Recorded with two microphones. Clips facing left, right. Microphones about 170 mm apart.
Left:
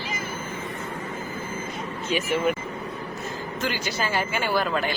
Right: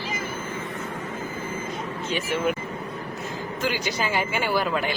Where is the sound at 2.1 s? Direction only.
5° left (ahead or behind).